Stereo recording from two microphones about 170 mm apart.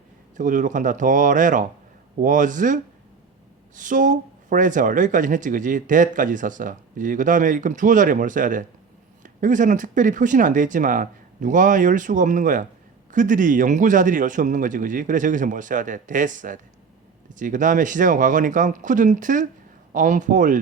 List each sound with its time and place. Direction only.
0.3 s speech: 50° right (ahead or behind)